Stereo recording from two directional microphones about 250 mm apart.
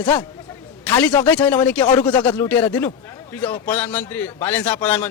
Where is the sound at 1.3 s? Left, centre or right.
Centre.